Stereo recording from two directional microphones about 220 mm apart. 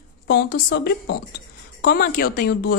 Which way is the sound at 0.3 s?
45° left (ahead or behind).